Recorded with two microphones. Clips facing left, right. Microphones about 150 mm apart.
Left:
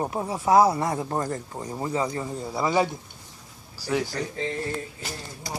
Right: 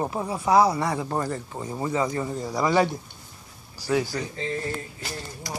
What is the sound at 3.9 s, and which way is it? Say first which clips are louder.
Speech: right 2 dB; centre (ahead or behind).